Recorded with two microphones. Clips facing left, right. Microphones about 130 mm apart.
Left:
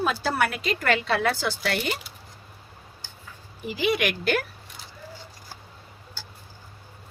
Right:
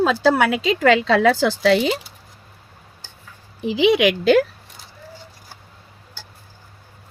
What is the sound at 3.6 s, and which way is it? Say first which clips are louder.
Speech: right 9 dB; 85° right.